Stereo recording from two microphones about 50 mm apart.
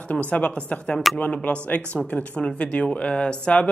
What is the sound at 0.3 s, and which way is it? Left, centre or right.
Speech, left.